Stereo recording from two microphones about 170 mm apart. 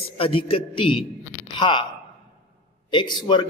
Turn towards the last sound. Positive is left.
turn(degrees=25)  # may be behind; listen again after turning